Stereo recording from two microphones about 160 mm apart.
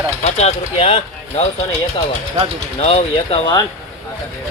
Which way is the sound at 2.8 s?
40° left (ahead or behind).